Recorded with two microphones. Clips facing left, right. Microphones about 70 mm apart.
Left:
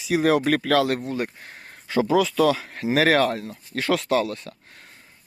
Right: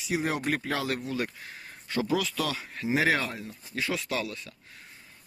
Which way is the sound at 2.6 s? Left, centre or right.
Left.